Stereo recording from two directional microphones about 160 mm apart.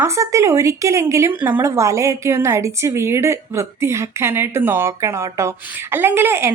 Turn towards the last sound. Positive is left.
turn(degrees=-15)  # may be behind; listen again after turning